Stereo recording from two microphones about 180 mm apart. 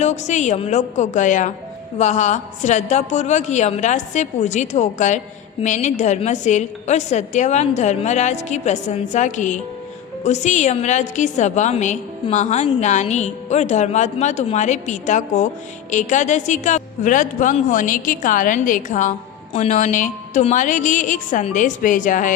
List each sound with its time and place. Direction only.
0.0 s a woman's voice: 40° left (ahead or behind)